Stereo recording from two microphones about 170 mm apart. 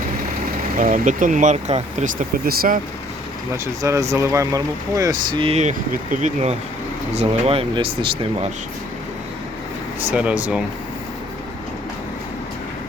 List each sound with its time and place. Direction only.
0.8 s speech: 50° right (ahead or behind)
3.8 s speech: 20° right (ahead or behind)
10.0 s speech: 10° right (ahead or behind)